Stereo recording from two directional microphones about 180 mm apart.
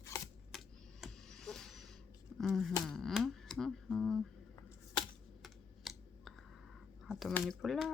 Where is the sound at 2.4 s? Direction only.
Centre (ahead or behind).